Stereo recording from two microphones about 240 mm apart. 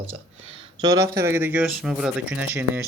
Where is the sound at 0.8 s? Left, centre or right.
Centre.